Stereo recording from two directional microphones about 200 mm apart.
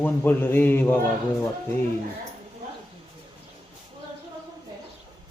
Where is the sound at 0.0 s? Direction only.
10° left (ahead or behind).